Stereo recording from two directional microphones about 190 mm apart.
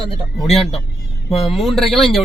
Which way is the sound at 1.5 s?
Centre (ahead or behind).